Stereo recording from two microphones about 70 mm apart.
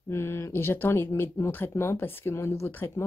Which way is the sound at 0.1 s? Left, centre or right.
Left.